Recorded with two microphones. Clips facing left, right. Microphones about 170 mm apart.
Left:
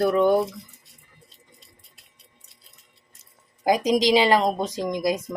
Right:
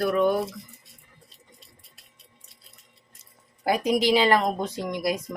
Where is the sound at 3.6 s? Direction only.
15° left (ahead or behind).